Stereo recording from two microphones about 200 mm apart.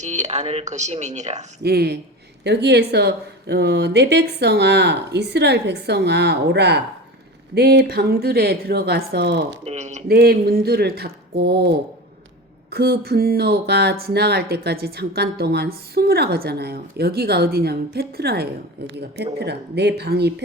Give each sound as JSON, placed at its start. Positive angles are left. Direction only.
{"t": 0.0, "sound": "speech", "side_deg": -35}
{"t": 1.6, "sound": "a woman's voice", "side_deg": -55}
{"t": 9.6, "sound": "speech", "side_deg": -35}
{"t": 10.1, "sound": "a woman's voice", "side_deg": -50}